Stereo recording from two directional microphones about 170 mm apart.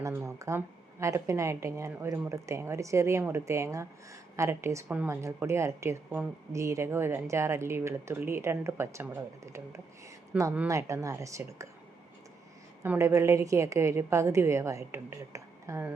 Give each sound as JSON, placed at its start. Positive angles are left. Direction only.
{"t": 0.0, "sound": "a woman's voice", "side_deg": -15}
{"t": 12.8, "sound": "a woman's voice", "side_deg": -15}